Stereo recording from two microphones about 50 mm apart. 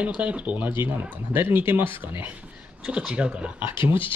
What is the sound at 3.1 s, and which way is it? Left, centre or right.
Speech, right.